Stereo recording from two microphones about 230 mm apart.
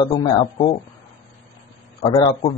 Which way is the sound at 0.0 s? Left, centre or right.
Centre.